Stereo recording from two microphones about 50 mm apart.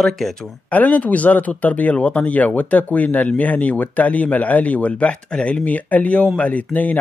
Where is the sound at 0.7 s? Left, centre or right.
Left.